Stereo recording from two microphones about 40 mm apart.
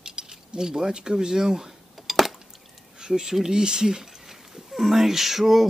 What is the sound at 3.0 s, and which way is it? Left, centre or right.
Speech, centre.